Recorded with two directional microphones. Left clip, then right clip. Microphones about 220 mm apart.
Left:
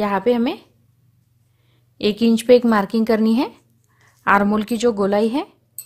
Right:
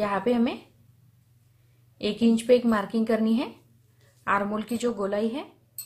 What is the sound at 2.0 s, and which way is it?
Speech, 45° left (ahead or behind).